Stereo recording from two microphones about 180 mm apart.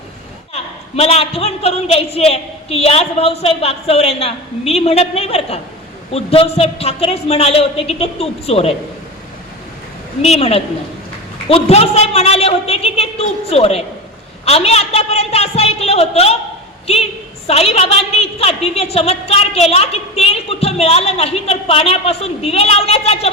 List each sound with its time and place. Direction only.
0.5 s a woman's voice: 35° left (ahead or behind)
10.2 s a woman's voice: 35° left (ahead or behind)